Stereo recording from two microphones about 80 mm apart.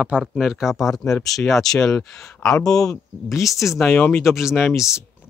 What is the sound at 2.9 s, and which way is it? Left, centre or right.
Speech, left.